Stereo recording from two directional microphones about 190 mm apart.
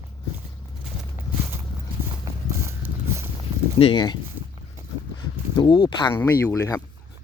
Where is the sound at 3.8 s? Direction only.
25° left (ahead or behind).